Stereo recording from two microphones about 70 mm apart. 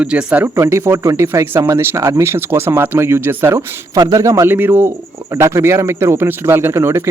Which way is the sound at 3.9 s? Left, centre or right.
Right.